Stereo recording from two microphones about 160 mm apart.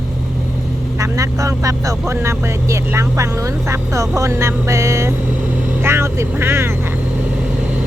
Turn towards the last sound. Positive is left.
turn(degrees=-15)  # may be behind; listen again after turning